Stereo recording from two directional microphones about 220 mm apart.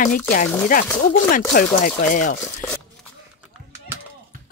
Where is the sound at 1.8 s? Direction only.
35° left (ahead or behind).